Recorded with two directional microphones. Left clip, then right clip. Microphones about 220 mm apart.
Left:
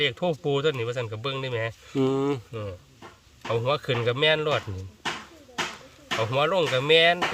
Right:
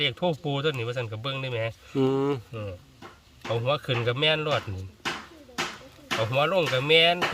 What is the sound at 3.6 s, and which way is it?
Speech, 30° left (ahead or behind).